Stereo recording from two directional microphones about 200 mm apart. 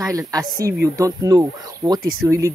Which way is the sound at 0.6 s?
15° right (ahead or behind).